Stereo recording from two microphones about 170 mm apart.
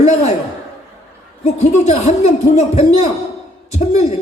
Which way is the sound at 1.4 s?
40° left (ahead or behind).